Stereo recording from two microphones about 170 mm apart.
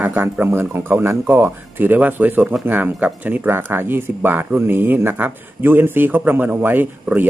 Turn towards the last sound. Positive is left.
turn(degrees=-10)  # may be behind; listen again after turning